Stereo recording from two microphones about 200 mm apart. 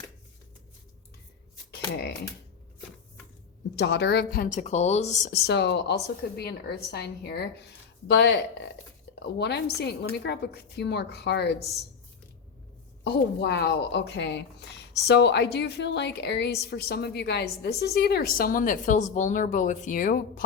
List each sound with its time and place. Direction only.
3.8 s speech: 60° left (ahead or behind); by 5.4 s 40° left (ahead or behind)
5.5 s a woman's voice: 60° left (ahead or behind)
13.1 s a woman's voice: 55° left (ahead or behind)